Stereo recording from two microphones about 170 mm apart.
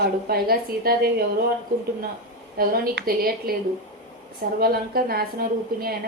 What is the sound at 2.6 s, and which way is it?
A woman's voice, 60° right (ahead or behind).